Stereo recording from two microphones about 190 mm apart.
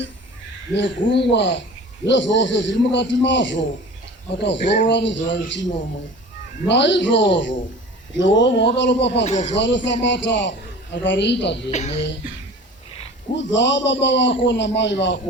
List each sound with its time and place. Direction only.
0.7 s a man's voice: 70° left (ahead or behind)
6.7 s a man's voice: 70° left (ahead or behind)
9.2 s speech: 35° left (ahead or behind)
9.6 s a man's voice: 70° left (ahead or behind)
11.7 s speech: 35° left (ahead or behind)
13.3 s a man's voice: 70° left (ahead or behind)